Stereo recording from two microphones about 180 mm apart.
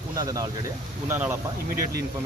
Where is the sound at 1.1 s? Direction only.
10° right (ahead or behind).